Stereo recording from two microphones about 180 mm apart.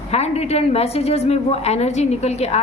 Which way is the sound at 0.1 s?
35° left (ahead or behind).